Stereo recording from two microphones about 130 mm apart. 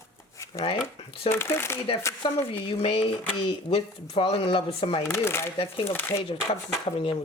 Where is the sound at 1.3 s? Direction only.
20° left (ahead or behind).